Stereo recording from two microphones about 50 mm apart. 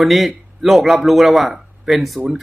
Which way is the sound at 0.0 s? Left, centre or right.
Centre.